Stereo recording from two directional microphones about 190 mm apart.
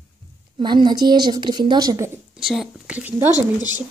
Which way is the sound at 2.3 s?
Centre (ahead or behind).